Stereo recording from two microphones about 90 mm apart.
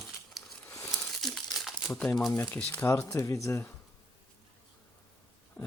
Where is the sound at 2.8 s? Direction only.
30° left (ahead or behind).